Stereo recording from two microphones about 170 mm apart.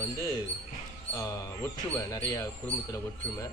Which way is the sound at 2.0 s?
20° left (ahead or behind).